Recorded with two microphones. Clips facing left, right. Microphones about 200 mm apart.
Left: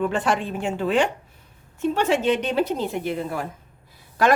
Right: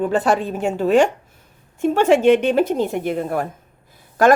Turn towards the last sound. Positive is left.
turn(degrees=-45)  # may be behind; listen again after turning